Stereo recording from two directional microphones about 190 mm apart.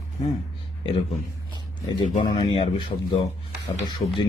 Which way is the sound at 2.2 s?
25° left (ahead or behind).